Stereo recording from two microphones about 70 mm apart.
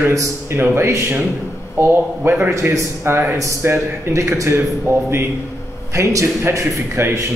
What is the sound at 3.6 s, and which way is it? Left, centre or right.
A man's voice, right.